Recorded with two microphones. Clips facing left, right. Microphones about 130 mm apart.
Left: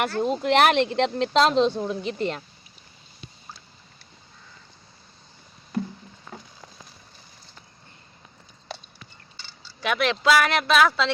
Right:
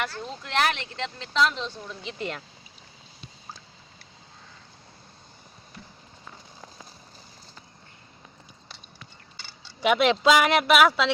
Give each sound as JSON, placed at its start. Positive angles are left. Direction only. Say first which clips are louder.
{"t": 0.0, "sound": "speech", "louder": "left 9 dB", "side_deg": 55}
{"t": 1.8, "sound": "speech", "louder": "left 10 dB", "side_deg": 45}
{"t": 9.6, "sound": "speech", "louder": "right 3 dB", "side_deg": -20}